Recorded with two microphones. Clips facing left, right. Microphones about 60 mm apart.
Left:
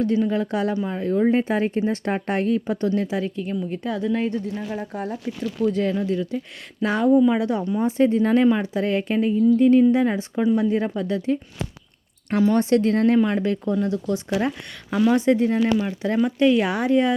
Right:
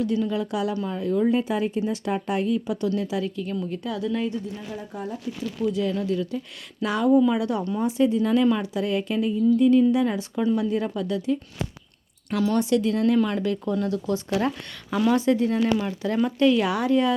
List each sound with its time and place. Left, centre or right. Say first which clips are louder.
0.0 s speech: left 3 dB; left
4.3 s speech: left 4 dB; left
5.9 s speech: left 2 dB; left
13.1 s speech: left 3 dB; left
15.1 s speech: left 2 dB; left